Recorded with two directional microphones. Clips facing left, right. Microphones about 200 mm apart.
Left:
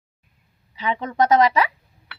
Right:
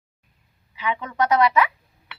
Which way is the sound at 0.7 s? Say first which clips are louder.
Left 2 dB; 35° left (ahead or behind).